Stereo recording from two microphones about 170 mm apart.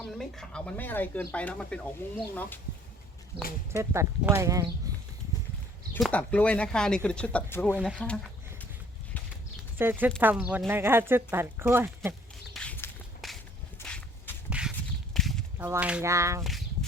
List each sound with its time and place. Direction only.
0.1 s speech: centre (ahead or behind)
3.9 s speech: 15° right (ahead or behind)
4.9 s a sound: 20° right (ahead or behind)
6.0 s speech: 10° left (ahead or behind)
7.7 s speech: 5° right (ahead or behind)
7.9 s speech: 5° left (ahead or behind)
9.7 s speech: 10° right (ahead or behind)
12.5 s walk: 10° left (ahead or behind)
15.5 s speech: 15° right (ahead or behind)
16.4 s speech: centre (ahead or behind)